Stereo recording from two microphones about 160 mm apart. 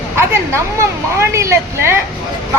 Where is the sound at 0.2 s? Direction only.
15° right (ahead or behind).